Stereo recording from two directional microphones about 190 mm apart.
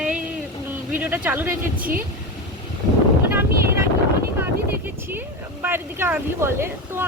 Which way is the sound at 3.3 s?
10° right (ahead or behind).